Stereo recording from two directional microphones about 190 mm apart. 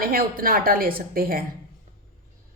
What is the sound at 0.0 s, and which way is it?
A woman's voice, 50° right (ahead or behind).